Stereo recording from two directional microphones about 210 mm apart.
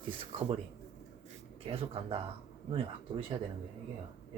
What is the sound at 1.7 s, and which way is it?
Speech, 25° right (ahead or behind).